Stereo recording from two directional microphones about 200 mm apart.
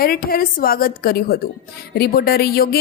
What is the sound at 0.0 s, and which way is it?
Speech, 45° left (ahead or behind).